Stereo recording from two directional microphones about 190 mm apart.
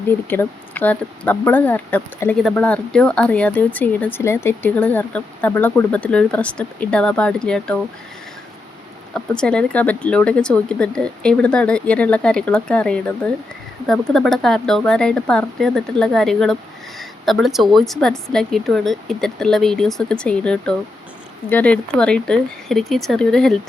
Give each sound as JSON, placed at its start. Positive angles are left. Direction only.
{"t": 0.1, "sound": "speech", "side_deg": 10}
{"t": 9.1, "sound": "speech", "side_deg": 5}